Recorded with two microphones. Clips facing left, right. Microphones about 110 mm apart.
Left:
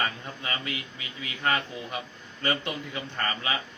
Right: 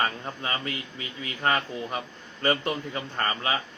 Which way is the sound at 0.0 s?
40° right (ahead or behind).